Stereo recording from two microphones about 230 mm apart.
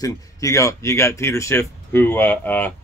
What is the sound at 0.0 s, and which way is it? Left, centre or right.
Speech, centre.